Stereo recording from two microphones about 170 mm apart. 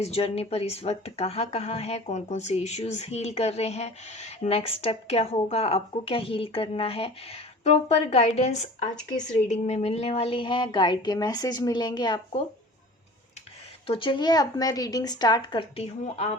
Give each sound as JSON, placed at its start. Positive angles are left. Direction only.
{"t": 0.0, "sound": "a woman's voice", "side_deg": 35}
{"t": 13.8, "sound": "a woman's voice", "side_deg": 30}